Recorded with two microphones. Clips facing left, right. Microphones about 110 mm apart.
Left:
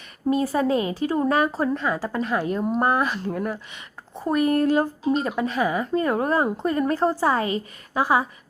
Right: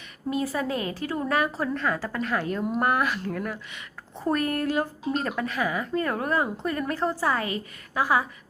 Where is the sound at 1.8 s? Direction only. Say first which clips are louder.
Left 3 dB; 20° left (ahead or behind).